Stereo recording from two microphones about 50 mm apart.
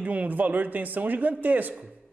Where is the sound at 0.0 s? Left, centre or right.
Right.